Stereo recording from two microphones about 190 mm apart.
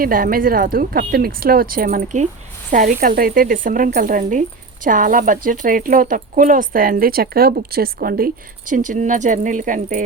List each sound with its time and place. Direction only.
0.0 s speech: 50° right (ahead or behind)